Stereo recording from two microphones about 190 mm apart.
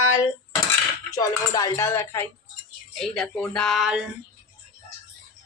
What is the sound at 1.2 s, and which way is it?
A woman's voice, 20° left (ahead or behind).